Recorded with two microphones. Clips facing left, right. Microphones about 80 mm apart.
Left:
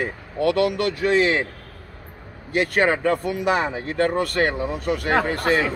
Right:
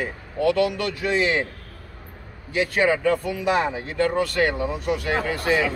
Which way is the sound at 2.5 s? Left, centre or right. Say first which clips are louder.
Left 1 dB; left.